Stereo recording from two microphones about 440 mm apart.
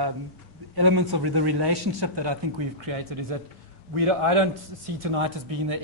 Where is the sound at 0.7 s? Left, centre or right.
Right.